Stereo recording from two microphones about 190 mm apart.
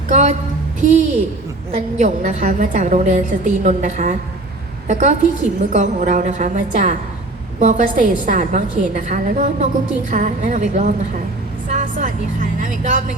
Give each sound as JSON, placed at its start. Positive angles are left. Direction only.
{"t": 0.1, "sound": "a woman's voice", "side_deg": -40}
{"t": 0.8, "sound": "music", "side_deg": -40}
{"t": 1.7, "sound": "a woman's voice", "side_deg": -40}
{"t": 11.7, "sound": "vehicle", "side_deg": -40}